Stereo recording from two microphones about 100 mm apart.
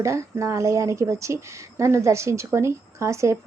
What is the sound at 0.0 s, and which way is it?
A woman's voice, 30° right (ahead or behind).